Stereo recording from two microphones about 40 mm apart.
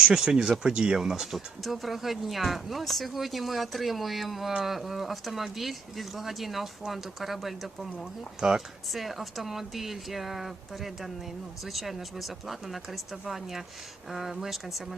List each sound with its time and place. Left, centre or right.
0.0 s speech: centre
0.9 s speech: centre
8.4 s speech: centre
8.9 s speech: centre